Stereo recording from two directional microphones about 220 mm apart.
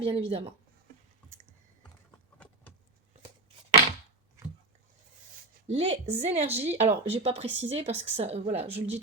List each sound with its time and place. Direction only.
0.0 s speech: 25° right (ahead or behind)
4.4 s dog: 15° right (ahead or behind)
5.6 s speech: 30° right (ahead or behind)